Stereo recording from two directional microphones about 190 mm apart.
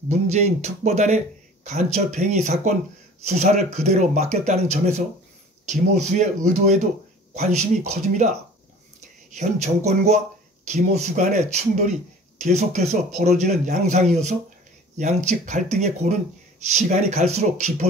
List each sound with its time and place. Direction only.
0.1 s speech: 35° right (ahead or behind)
9.3 s speech: 35° right (ahead or behind)